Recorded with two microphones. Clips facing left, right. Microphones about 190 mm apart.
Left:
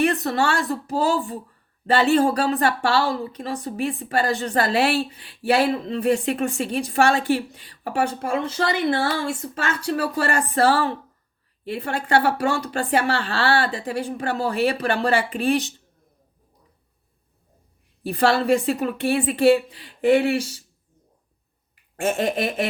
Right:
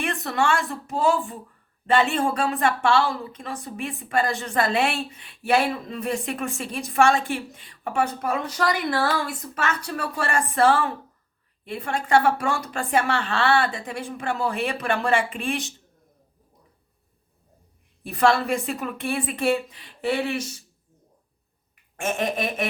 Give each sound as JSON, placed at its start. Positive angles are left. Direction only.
{"t": 0.0, "sound": "a woman's voice", "side_deg": 35}
{"t": 18.0, "sound": "a woman's voice", "side_deg": 35}
{"t": 21.9, "sound": "a woman's voice", "side_deg": 30}